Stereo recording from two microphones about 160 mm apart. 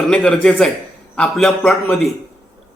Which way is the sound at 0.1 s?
5° left (ahead or behind).